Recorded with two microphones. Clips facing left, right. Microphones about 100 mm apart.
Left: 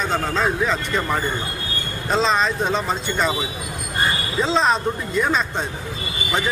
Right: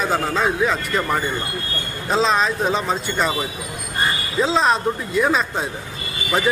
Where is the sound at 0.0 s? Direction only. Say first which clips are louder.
Right 1 dB; 5° right (ahead or behind).